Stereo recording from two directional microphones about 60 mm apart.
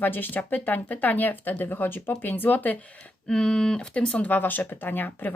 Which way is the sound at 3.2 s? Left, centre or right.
Centre.